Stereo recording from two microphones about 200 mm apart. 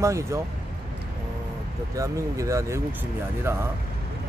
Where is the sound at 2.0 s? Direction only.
15° right (ahead or behind).